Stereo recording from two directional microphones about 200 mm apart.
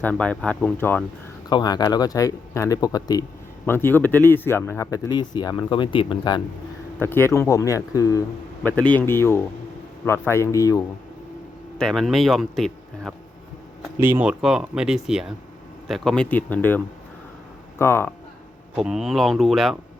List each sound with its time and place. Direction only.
0.0 s speech: 5° left (ahead or behind)
1.5 s speech: 20° left (ahead or behind)
7.0 s speech: 10° left (ahead or behind)
11.8 s speech: centre (ahead or behind)
18.8 s speech: centre (ahead or behind)